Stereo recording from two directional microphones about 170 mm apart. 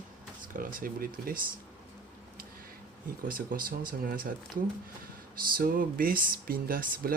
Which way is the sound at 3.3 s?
55° right (ahead or behind).